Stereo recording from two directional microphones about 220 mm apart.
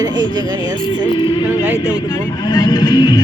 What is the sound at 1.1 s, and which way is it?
Speech, 25° left (ahead or behind).